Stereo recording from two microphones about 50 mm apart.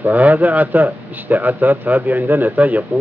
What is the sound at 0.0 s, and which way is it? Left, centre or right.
A man's voice, right.